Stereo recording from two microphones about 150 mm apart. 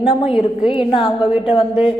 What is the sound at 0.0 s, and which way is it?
Speech, 40° left (ahead or behind).